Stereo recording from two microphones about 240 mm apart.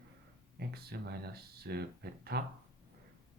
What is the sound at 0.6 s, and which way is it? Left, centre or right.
Speech, right.